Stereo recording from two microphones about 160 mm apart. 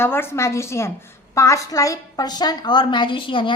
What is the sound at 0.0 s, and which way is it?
A woman's voice, 15° left (ahead or behind).